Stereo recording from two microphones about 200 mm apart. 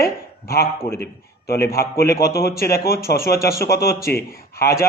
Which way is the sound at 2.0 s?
50° left (ahead or behind).